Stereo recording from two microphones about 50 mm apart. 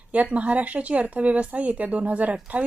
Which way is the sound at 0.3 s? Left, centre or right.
Right.